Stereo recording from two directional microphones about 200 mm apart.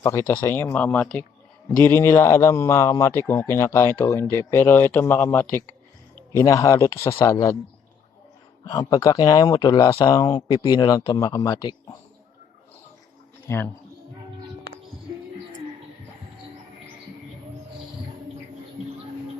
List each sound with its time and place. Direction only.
0.0 s a man's voice: 15° left (ahead or behind)
8.6 s a man's voice: 15° left (ahead or behind)